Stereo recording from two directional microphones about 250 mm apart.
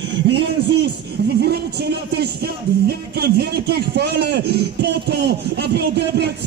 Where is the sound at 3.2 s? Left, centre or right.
Right.